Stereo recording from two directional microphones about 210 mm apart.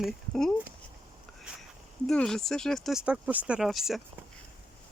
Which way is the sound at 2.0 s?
Centre (ahead or behind).